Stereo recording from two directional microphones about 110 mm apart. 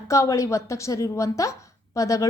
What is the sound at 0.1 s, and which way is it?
A woman's voice, 30° left (ahead or behind).